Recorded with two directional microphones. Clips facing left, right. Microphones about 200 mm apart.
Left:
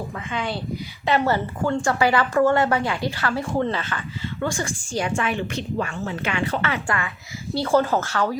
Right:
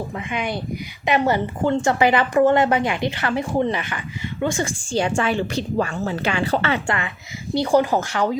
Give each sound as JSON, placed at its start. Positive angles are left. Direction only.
{"t": 0.3, "sound": "a woman's voice", "side_deg": -15}